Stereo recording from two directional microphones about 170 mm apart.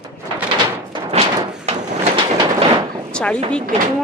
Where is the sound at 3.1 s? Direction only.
5° left (ahead or behind).